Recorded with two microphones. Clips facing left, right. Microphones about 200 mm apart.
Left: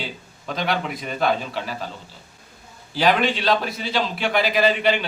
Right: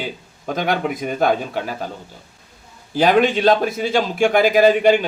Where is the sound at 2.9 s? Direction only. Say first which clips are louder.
Right 5 dB; 45° right (ahead or behind).